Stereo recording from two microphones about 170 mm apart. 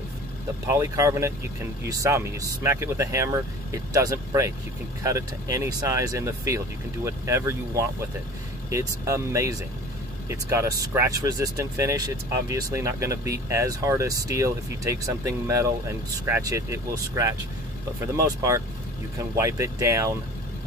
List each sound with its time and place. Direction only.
0.7 s speech: 20° right (ahead or behind)